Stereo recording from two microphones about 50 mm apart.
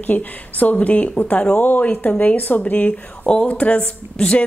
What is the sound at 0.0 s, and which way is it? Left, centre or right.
Speech, left.